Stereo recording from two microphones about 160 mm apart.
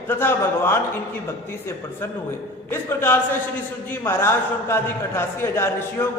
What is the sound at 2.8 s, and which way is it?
A man's voice, 15° left (ahead or behind).